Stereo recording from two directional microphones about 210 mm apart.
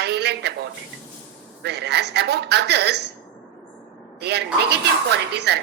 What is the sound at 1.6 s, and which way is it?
Speech, 55° right (ahead or behind).